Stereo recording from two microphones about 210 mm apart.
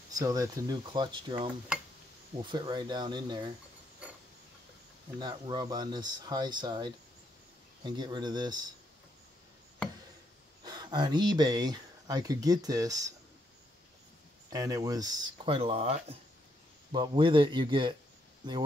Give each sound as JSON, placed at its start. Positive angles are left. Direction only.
{"t": 0.1, "sound": "speech", "side_deg": -15}
{"t": 2.5, "sound": "speech", "side_deg": -20}
{"t": 5.2, "sound": "speech", "side_deg": -20}
{"t": 10.6, "sound": "speech", "side_deg": -20}
{"t": 14.5, "sound": "speech", "side_deg": -15}